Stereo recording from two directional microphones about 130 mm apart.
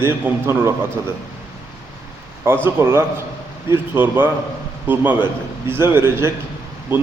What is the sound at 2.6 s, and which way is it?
A man's voice, 20° right (ahead or behind).